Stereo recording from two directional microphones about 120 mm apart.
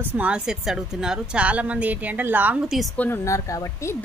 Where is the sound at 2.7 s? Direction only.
Centre (ahead or behind).